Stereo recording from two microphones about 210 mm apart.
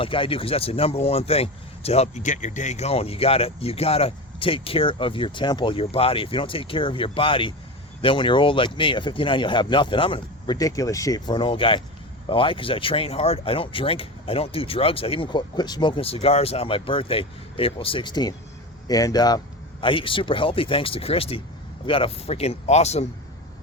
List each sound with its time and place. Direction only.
0.0 s a man's voice: 25° left (ahead or behind)